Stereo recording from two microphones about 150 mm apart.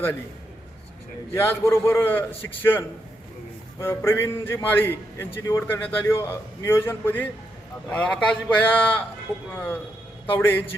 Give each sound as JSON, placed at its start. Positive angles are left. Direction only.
{"t": 1.3, "sound": "a man's voice", "side_deg": 15}